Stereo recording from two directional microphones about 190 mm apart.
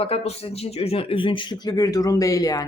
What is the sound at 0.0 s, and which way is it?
A woman's voice, 30° left (ahead or behind).